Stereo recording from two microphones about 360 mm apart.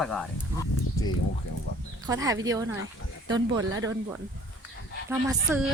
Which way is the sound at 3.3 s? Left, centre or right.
Right.